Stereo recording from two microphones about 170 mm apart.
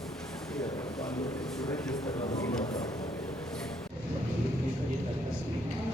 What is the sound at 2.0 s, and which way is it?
Speech, 20° left (ahead or behind).